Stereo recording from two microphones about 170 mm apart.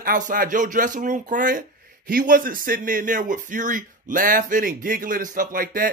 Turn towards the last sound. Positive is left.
turn(degrees=-55)  # may be behind; listen again after turning